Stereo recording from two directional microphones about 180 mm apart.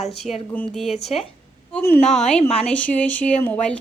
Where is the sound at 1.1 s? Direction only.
40° left (ahead or behind).